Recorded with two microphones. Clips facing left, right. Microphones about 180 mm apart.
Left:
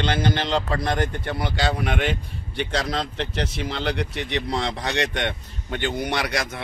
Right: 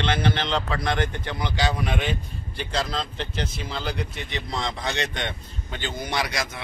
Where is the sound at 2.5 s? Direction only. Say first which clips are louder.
Left 3 dB; 75° left (ahead or behind).